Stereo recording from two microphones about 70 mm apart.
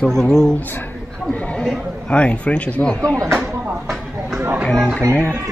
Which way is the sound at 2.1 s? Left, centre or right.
Centre.